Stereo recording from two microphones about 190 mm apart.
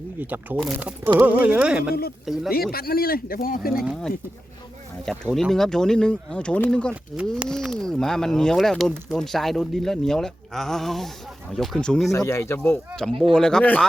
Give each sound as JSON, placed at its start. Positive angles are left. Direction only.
{"t": 0.2, "sound": "speech", "side_deg": -10}
{"t": 2.7, "sound": "speech", "side_deg": 55}
{"t": 5.0, "sound": "speech", "side_deg": 0}
{"t": 12.1, "sound": "speech", "side_deg": 15}